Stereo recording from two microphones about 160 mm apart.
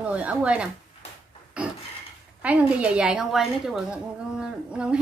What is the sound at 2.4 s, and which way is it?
A woman's voice, 10° right (ahead or behind).